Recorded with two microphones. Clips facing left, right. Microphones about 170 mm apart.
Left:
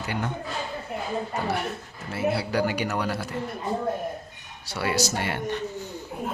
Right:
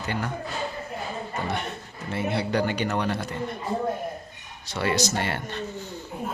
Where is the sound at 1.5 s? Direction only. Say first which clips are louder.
Left 2 dB; 5° left (ahead or behind).